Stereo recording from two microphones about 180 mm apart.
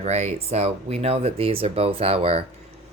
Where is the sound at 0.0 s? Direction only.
35° right (ahead or behind).